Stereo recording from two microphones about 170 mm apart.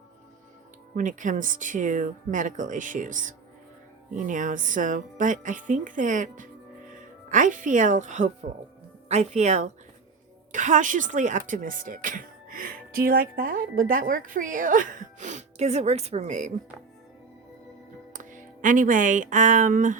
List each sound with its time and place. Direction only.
0.9 s speech: 50° right (ahead or behind)
18.1 s speech: 50° right (ahead or behind)